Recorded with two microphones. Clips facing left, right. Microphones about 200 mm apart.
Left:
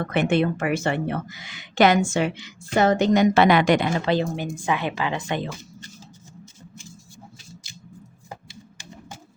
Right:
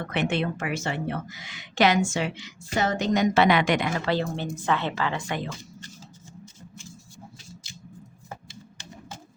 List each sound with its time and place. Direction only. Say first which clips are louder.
0.0 s a woman's voice: left 5 dB; 50° left (ahead or behind); by 4.1 s 30° left (ahead or behind)
4.1 s a woman's voice: left 3 dB; 15° left (ahead or behind)